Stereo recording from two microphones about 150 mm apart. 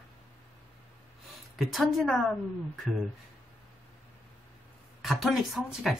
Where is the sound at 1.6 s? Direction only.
Centre (ahead or behind).